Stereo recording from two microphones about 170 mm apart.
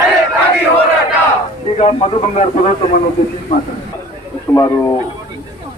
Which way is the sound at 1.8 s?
40° left (ahead or behind).